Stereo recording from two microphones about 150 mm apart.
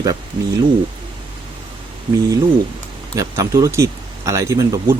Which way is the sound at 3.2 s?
20° right (ahead or behind).